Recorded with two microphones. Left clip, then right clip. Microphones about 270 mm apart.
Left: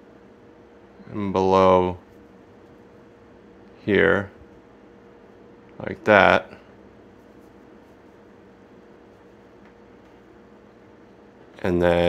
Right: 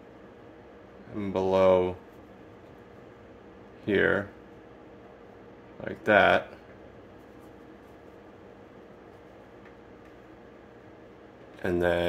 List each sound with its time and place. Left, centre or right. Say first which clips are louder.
1.1 s speech: left 7 dB; left
3.8 s speech: left 6 dB; left
5.8 s speech: left 6 dB; left
11.6 s speech: left 7 dB; left